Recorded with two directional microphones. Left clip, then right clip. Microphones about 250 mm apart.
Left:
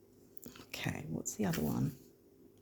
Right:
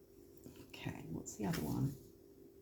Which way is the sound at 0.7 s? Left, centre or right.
Left.